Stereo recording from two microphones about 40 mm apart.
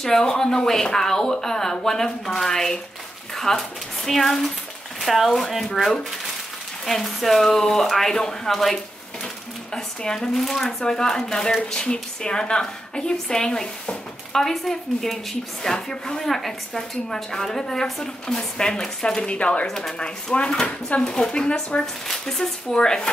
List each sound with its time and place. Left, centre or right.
0.2 s a woman's voice: centre
6.9 s a woman's voice: centre
10.3 s a woman's voice: centre
10.9 s a woman's voice: centre
15.6 s a woman's voice: centre
19.2 s speech: left
19.7 s a woman's voice: centre
20.6 s speech: left
21.1 s a woman's voice: left